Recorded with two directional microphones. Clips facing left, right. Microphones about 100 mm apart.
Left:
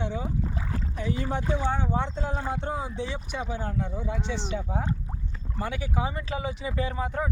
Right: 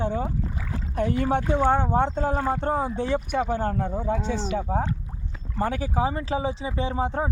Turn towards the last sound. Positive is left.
turn(degrees=-30)  # may be behind; listen again after turning